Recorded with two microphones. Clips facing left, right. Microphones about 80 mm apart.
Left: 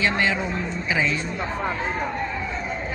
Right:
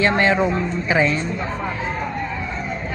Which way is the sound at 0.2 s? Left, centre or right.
Right.